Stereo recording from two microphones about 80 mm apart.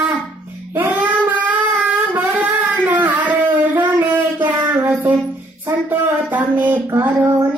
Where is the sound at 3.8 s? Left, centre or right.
Right.